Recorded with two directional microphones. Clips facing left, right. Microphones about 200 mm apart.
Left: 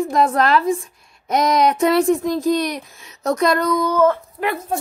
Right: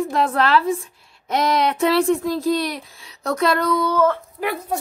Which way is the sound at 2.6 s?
45° left (ahead or behind).